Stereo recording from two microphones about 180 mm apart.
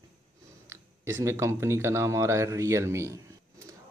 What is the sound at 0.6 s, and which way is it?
Speech, 15° right (ahead or behind).